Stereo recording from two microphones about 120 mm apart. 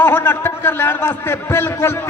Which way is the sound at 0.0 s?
15° left (ahead or behind).